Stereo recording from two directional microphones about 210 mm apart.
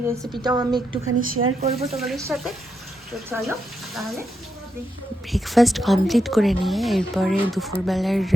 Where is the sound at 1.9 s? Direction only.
Centre (ahead or behind).